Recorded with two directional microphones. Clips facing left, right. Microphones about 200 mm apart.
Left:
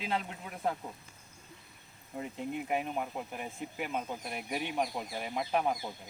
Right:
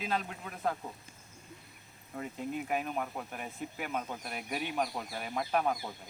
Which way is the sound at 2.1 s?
15° left (ahead or behind).